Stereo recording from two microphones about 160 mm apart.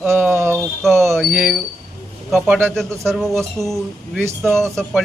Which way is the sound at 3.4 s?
Centre (ahead or behind).